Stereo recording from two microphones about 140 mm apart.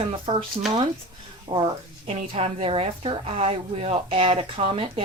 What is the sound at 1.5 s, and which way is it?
Speech, 40° right (ahead or behind).